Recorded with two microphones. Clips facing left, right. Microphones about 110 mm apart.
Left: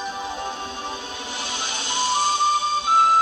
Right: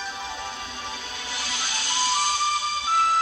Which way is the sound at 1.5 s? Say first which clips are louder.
Left 2 dB; 20° left (ahead or behind).